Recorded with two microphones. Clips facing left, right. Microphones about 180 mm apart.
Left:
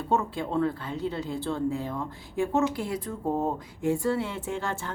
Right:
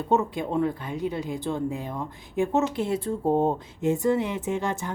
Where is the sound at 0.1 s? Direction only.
20° right (ahead or behind).